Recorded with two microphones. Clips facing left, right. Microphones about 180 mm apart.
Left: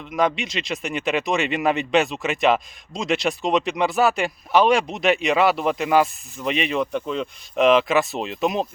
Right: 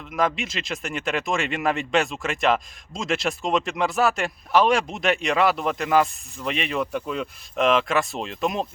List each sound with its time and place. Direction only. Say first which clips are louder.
0.0 s speech: left 2 dB; centre (ahead or behind)